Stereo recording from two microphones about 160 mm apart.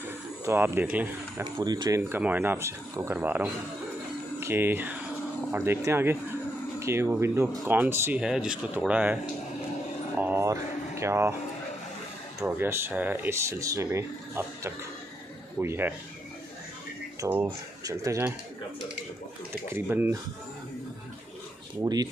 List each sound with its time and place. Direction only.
0.5 s speech: 15° right (ahead or behind)
1.4 s speech: 25° right (ahead or behind)
12.4 s speech: 10° right (ahead or behind)
17.2 s speech: 10° right (ahead or behind)
19.7 s speech: 15° right (ahead or behind)
21.8 s speech: 25° right (ahead or behind)